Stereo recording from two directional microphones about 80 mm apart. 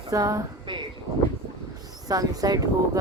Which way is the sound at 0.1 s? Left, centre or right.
Right.